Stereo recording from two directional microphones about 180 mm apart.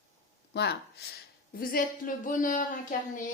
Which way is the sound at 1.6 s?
50° left (ahead or behind).